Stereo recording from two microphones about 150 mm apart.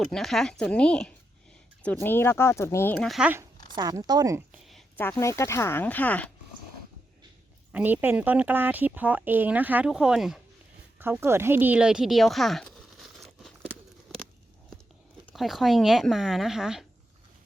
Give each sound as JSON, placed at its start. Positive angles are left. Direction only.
{"t": 0.0, "sound": "speech", "side_deg": 0}
{"t": 3.1, "sound": "speech", "side_deg": -5}
{"t": 3.8, "sound": "speech", "side_deg": -25}
{"t": 4.5, "sound": "a sound", "side_deg": 0}
{"t": 5.1, "sound": "speech", "side_deg": 20}
{"t": 7.7, "sound": "speech", "side_deg": -10}
{"t": 11.0, "sound": "speech", "side_deg": -15}
{"t": 15.3, "sound": "speech", "side_deg": 0}